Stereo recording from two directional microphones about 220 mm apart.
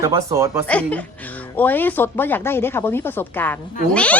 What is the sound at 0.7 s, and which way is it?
Speech, 5° left (ahead or behind).